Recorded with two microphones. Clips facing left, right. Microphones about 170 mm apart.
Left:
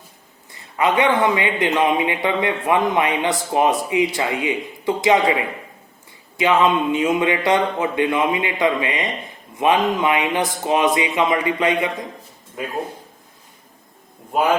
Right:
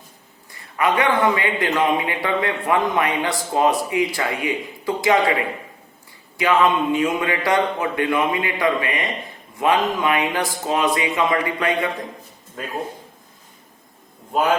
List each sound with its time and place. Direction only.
0.5 s a man's voice: 20° left (ahead or behind)